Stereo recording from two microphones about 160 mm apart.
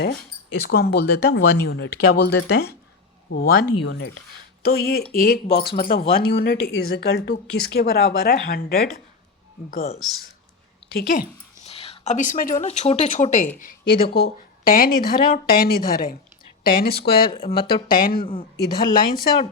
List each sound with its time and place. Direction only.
0.0 s speech: 90° left
4.6 s speech: 75° left (ahead or behind)
5.1 s speech: 65° left (ahead or behind); by 7.9 s 90° left
8.3 s speech: 65° left (ahead or behind)
10.0 s speech: centre (ahead or behind)
10.9 s speech: 65° left (ahead or behind)
11.6 s a sound: 40° left (ahead or behind); by 12.6 s 60° left (ahead or behind)
12.6 s speech: 40° left (ahead or behind)
13.6 s speech: 70° left (ahead or behind)
17.8 s speech: 60° left (ahead or behind)